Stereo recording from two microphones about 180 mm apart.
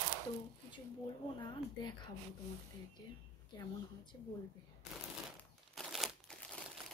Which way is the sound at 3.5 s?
20° left (ahead or behind).